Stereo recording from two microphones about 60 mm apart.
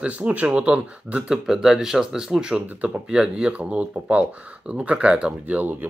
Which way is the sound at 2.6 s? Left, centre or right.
Right.